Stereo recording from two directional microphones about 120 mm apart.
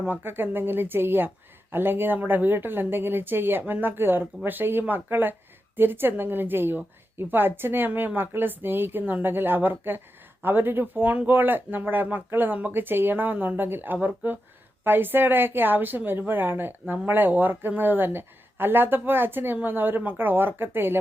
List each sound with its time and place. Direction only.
0.0 s a woman's voice: 15° right (ahead or behind)